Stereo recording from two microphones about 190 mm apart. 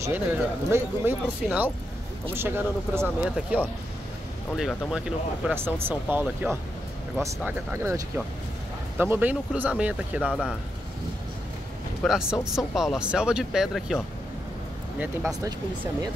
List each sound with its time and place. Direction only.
0.0 s speech: 10° right (ahead or behind)
12.0 s speech: 5° right (ahead or behind)
15.0 s speech: 15° right (ahead or behind)